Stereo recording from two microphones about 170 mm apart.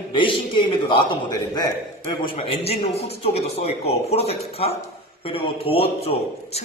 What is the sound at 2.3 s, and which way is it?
A woman's voice, 35° left (ahead or behind).